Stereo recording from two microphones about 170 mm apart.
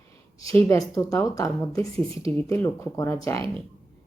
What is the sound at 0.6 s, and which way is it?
A woman's voice, 20° left (ahead or behind).